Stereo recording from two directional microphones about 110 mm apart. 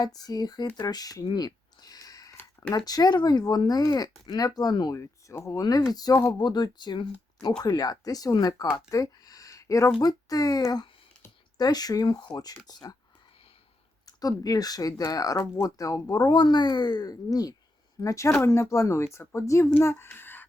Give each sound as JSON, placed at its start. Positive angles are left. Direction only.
{"t": 0.0, "sound": "speech", "side_deg": 35}
{"t": 0.8, "sound": "a sound", "side_deg": 35}
{"t": 2.7, "sound": "speech", "side_deg": 35}
{"t": 4.9, "sound": "speech", "side_deg": 25}
{"t": 14.0, "sound": "speech", "side_deg": 35}